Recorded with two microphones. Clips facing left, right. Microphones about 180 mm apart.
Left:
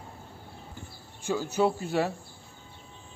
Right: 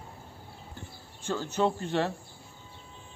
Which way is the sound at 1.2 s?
10° left (ahead or behind).